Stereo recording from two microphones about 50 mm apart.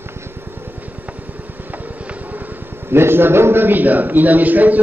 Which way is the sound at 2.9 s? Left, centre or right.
Right.